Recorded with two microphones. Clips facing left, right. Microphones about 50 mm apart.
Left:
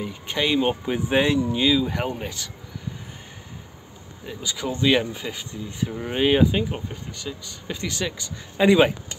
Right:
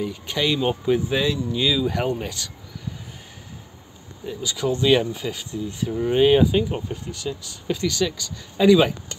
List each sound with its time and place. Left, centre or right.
0.0 s speech: centre
1.0 s speech: left
1.5 s speech: centre
4.4 s speech: left; by 7.8 s centre
7.8 s speech: left